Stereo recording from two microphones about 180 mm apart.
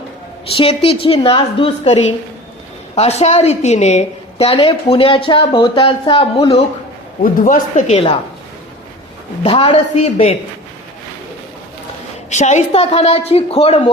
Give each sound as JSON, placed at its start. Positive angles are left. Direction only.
{"t": 0.5, "sound": "a woman's voice", "side_deg": 30}
{"t": 7.2, "sound": "speech", "side_deg": 50}
{"t": 9.4, "sound": "a woman's voice", "side_deg": 30}
{"t": 12.3, "sound": "a woman's voice", "side_deg": 40}